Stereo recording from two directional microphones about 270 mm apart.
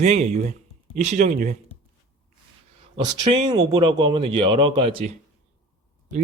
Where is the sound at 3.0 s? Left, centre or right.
Centre.